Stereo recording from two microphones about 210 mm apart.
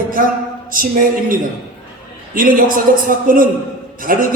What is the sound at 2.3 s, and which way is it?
A woman's voice, 40° right (ahead or behind).